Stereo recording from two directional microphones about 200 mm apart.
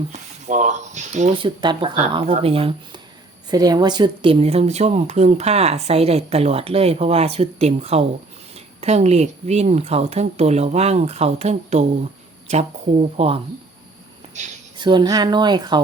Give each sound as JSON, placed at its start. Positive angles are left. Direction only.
{"t": 0.1, "sound": "speech", "side_deg": -35}
{"t": 1.5, "sound": "speech", "side_deg": -25}
{"t": 14.8, "sound": "speech", "side_deg": -20}